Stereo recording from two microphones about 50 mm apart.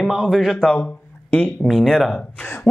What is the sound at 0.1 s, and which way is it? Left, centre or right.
Speech, centre.